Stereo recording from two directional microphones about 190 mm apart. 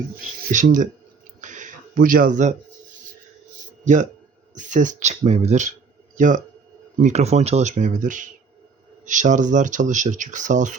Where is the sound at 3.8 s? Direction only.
40° right (ahead or behind).